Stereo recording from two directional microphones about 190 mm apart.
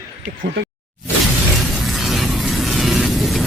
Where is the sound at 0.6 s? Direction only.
65° right (ahead or behind).